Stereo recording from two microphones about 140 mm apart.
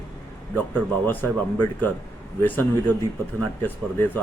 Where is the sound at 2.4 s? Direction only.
15° left (ahead or behind).